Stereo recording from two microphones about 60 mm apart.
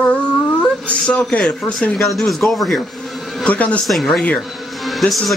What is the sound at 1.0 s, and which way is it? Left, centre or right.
Speech, left.